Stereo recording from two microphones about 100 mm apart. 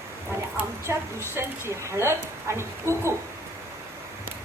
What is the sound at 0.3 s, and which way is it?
A woman's voice, 25° right (ahead or behind).